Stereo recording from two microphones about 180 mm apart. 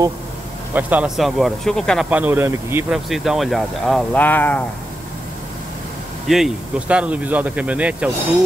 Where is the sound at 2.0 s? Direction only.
10° right (ahead or behind).